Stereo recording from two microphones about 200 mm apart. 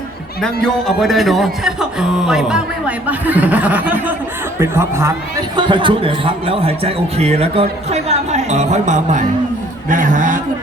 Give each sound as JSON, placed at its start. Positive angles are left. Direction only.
{"t": 0.4, "sound": "a man's voice", "side_deg": 5}
{"t": 5.5, "sound": "a man's voice", "side_deg": -25}